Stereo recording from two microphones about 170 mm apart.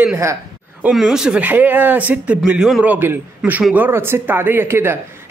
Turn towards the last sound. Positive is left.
turn(degrees=-15)  # may be behind; listen again after turning